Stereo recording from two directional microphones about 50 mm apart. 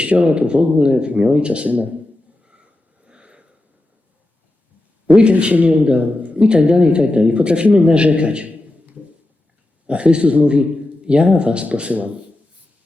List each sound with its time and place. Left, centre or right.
0.0 s speech: right
3.1 s a sound: centre
5.0 s speech: right
9.8 s speech: right